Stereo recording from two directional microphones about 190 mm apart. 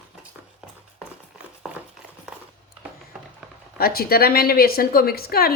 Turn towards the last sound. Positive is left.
turn(degrees=55)  # may be behind; listen again after turning